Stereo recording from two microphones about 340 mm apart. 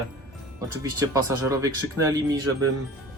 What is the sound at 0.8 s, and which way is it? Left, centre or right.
Speech, centre.